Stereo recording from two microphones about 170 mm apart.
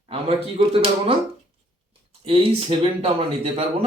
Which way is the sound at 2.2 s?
35° right (ahead or behind).